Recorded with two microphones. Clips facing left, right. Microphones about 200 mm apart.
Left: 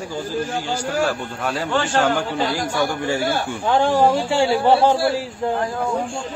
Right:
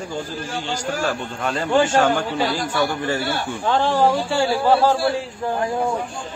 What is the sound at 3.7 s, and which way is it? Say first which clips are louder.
Speech: left 2 dB; 15° left (ahead or behind).